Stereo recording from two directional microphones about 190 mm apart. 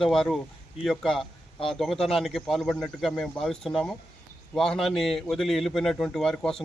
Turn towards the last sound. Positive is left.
turn(degrees=0)  # may be behind; listen again after turning